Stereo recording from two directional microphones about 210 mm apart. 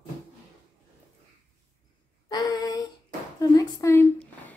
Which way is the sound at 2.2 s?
20° left (ahead or behind).